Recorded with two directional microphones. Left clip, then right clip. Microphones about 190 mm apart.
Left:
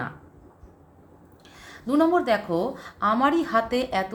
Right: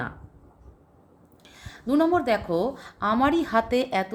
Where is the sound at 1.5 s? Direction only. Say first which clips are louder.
Left 1 dB; 40° right (ahead or behind).